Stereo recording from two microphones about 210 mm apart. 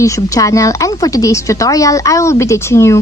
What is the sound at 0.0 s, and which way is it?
Speech, 15° left (ahead or behind).